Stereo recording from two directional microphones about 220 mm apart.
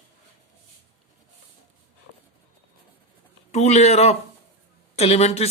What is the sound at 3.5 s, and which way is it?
A man's voice, 30° left (ahead or behind).